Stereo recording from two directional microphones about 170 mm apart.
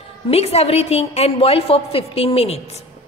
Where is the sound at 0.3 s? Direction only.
40° left (ahead or behind).